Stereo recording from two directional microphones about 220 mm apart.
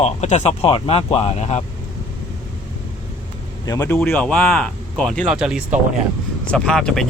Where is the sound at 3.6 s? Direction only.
15° left (ahead or behind).